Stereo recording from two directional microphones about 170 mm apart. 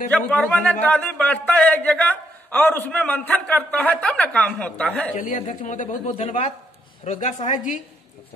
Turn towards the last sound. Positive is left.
turn(degrees=45)  # may be behind; listen again after turning